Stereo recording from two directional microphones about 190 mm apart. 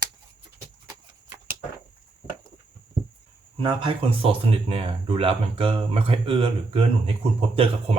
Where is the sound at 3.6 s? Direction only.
25° right (ahead or behind).